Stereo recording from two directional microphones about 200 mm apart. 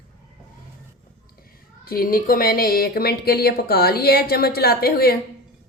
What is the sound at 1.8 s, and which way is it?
Speech, 45° left (ahead or behind).